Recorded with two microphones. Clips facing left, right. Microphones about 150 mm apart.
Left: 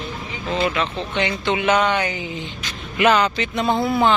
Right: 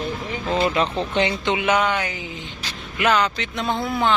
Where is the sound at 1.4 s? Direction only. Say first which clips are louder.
Left 2 dB; 10° right (ahead or behind).